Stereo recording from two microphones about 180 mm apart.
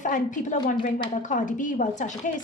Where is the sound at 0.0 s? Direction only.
45° left (ahead or behind).